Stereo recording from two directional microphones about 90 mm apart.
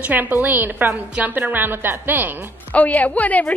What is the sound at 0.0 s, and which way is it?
A woman's voice, 20° right (ahead or behind).